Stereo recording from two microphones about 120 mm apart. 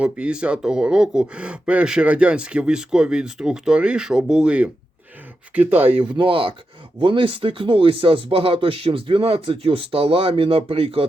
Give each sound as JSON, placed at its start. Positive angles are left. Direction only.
{"t": 0.0, "sound": "speech", "side_deg": -10}
{"t": 6.1, "sound": "speech", "side_deg": -45}